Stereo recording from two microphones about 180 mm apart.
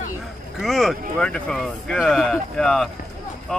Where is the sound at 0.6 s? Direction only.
Centre (ahead or behind).